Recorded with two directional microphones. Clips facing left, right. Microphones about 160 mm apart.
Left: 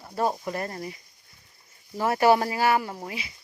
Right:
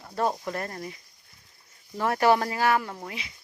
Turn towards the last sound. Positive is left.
turn(degrees=5)  # may be behind; listen again after turning